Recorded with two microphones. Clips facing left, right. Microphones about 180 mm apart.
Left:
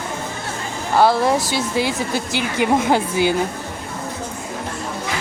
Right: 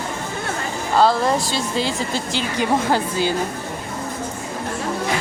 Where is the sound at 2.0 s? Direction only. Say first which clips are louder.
Left 1 dB; 10° left (ahead or behind).